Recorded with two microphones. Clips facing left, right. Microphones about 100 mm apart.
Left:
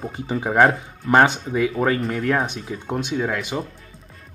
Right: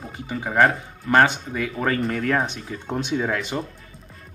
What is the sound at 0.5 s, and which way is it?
Speech, 15° left (ahead or behind).